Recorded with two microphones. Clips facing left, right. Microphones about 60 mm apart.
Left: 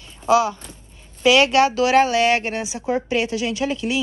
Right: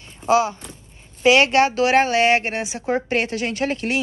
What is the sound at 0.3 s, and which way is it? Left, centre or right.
A woman's voice, right.